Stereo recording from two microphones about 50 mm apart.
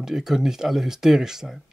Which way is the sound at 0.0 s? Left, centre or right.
Centre.